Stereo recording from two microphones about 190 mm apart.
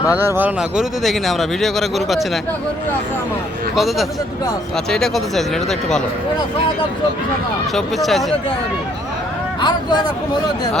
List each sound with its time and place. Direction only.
0.3 s speech: 10° right (ahead or behind)
3.8 s speech: centre (ahead or behind)
7.8 s speech: centre (ahead or behind)
9.6 s speech: 25° left (ahead or behind)